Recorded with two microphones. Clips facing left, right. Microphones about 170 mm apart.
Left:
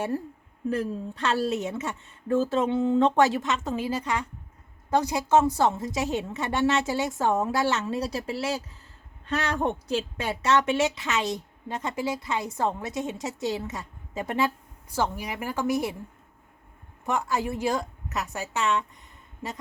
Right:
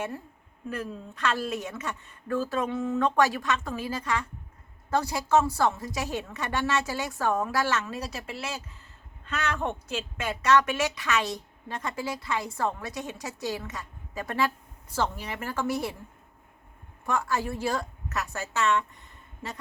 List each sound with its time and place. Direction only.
0.7 s a woman's voice: 30° left (ahead or behind)
17.1 s a woman's voice: 20° left (ahead or behind)